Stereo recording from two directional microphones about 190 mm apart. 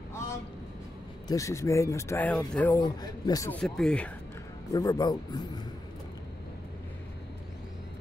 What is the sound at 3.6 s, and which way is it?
Speech, centre (ahead or behind).